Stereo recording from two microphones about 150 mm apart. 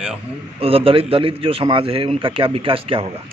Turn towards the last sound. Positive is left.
turn(degrees=-40)  # may be behind; listen again after turning